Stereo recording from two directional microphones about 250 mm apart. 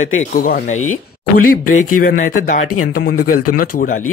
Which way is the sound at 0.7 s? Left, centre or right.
Left.